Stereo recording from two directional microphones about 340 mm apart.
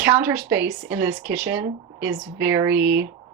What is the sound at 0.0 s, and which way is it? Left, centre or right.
A woman's voice, centre.